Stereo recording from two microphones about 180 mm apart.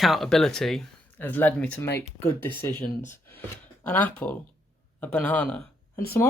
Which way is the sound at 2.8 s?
45° left (ahead or behind).